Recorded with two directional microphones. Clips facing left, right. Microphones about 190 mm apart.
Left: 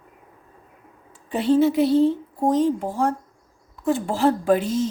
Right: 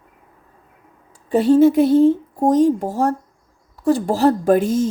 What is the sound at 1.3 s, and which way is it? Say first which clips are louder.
Speech: right 6 dB; 45° right (ahead or behind).